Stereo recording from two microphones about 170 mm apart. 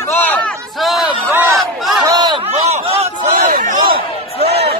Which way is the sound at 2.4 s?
35° right (ahead or behind).